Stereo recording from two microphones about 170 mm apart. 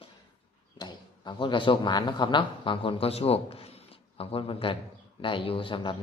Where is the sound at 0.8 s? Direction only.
25° left (ahead or behind).